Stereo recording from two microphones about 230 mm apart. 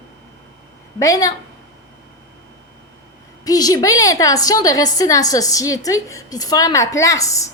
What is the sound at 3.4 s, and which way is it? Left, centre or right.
A woman's voice, centre.